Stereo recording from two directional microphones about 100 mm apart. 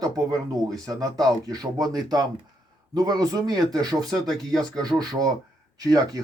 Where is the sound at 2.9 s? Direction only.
40° right (ahead or behind).